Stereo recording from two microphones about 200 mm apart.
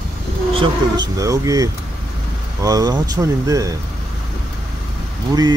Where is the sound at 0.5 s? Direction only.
20° right (ahead or behind).